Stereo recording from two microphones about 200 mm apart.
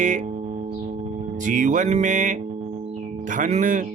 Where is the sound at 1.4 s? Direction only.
40° right (ahead or behind).